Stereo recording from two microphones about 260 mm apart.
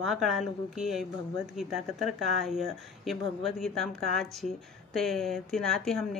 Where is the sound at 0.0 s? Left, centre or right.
Centre.